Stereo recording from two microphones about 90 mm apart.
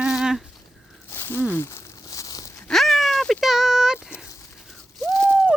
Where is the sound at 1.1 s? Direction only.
25° left (ahead or behind).